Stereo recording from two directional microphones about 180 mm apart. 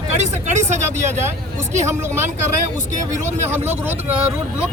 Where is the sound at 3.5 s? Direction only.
10° right (ahead or behind).